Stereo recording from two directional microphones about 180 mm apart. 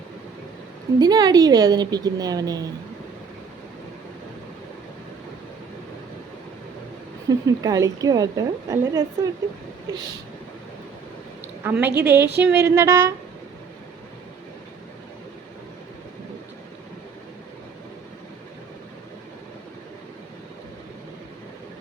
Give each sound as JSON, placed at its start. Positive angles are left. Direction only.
{"t": 0.9, "sound": "a woman's voice", "side_deg": -20}
{"t": 7.3, "sound": "a woman's voice", "side_deg": -20}
{"t": 11.6, "sound": "a woman's voice", "side_deg": -10}